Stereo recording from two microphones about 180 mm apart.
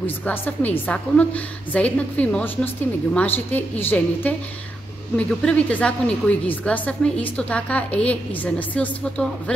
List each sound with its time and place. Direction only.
0.0 s a woman's voice: 10° left (ahead or behind)